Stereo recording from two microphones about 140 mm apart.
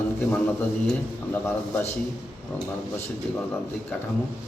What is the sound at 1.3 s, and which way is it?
Speech, 15° left (ahead or behind).